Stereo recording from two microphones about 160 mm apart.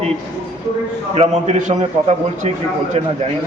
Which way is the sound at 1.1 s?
40° right (ahead or behind).